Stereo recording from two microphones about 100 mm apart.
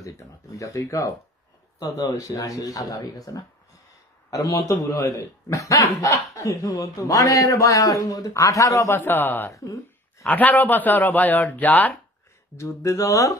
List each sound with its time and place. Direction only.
0.0 s speech: 30° left (ahead or behind); by 12.0 s 15° left (ahead or behind)
12.5 s speech: 30° left (ahead or behind)